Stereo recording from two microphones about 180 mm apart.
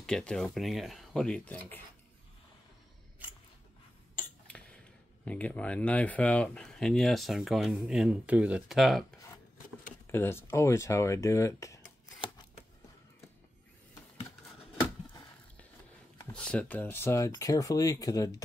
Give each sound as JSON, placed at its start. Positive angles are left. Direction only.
{"t": 0.0, "sound": "speech", "side_deg": 5}
{"t": 3.2, "sound": "biting", "side_deg": -10}
{"t": 4.5, "sound": "speech", "side_deg": 5}
{"t": 10.1, "sound": "speech", "side_deg": 15}
{"t": 16.2, "sound": "speech", "side_deg": 5}